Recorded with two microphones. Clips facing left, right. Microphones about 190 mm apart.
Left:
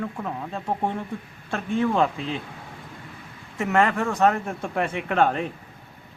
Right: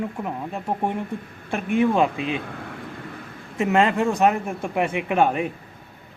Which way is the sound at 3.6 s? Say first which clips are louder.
Right 2 dB; 20° right (ahead or behind).